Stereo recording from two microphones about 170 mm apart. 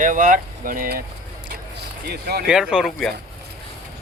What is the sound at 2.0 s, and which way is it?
Speech, 65° right (ahead or behind).